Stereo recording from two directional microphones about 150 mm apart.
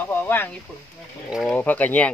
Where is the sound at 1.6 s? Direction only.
10° left (ahead or behind).